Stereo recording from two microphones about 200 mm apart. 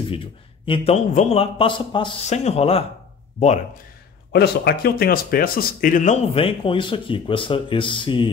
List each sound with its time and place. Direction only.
0.1 s a man's voice: 25° left (ahead or behind)
4.3 s speech: 55° left (ahead or behind)
6.3 s speech: 25° left (ahead or behind)